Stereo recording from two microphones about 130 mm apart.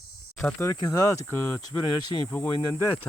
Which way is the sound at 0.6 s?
25° left (ahead or behind).